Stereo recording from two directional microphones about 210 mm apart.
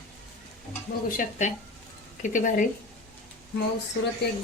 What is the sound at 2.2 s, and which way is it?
Speech, 40° left (ahead or behind).